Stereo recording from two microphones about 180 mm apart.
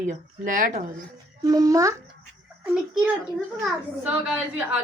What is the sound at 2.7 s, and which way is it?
A woman's voice, 5° right (ahead or behind).